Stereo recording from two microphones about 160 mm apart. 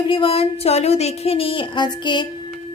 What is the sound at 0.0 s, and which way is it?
A woman's voice, 35° left (ahead or behind).